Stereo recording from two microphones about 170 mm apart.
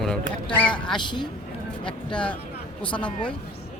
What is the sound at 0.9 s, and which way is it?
Speech, 25° left (ahead or behind).